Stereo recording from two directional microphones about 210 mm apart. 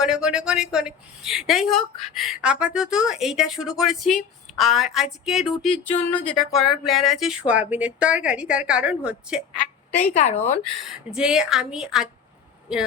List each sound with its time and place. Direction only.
0.0 s speech: 5° right (ahead or behind)
9.9 s speech: 30° left (ahead or behind)
10.8 s speech: 5° right (ahead or behind)